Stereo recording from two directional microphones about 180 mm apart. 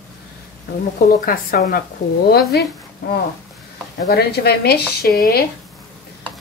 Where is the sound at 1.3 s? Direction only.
55° left (ahead or behind).